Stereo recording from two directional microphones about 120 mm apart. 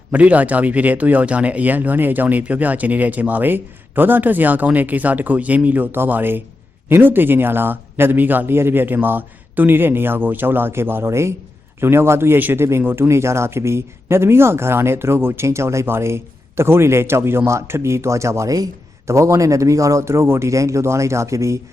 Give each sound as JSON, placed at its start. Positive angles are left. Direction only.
{"t": 0.1, "sound": "speech", "side_deg": -10}